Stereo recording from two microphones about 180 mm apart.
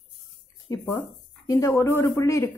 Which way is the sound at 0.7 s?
20° left (ahead or behind).